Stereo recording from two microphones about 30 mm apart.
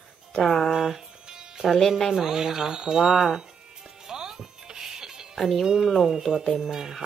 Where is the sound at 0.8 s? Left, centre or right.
Centre.